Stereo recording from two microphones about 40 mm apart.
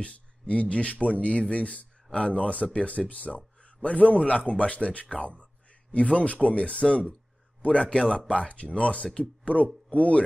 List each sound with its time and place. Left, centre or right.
0.0 s a man's voice: left